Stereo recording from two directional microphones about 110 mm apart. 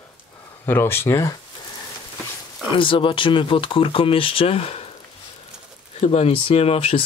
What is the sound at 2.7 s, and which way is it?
Speech, 50° left (ahead or behind).